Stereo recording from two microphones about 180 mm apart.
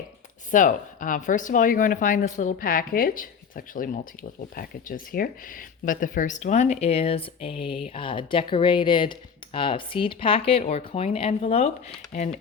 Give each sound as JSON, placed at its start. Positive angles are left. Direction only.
{"t": 0.5, "sound": "speech", "side_deg": 45}